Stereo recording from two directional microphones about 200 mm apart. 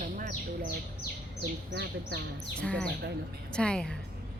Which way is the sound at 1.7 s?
55° right (ahead or behind).